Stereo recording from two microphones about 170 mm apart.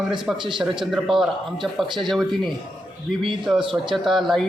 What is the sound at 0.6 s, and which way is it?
A man's voice, centre (ahead or behind).